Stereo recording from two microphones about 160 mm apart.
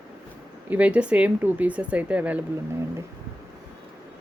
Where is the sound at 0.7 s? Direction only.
10° right (ahead or behind).